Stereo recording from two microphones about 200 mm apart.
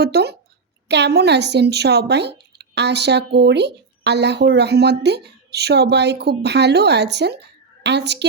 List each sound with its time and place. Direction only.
0.0 s speech: 55° right (ahead or behind)